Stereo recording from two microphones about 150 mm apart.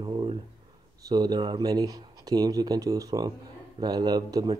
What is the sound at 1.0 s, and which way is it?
Speech, 25° right (ahead or behind).